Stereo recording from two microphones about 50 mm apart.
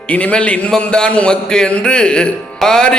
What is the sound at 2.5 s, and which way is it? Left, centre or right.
Music, centre.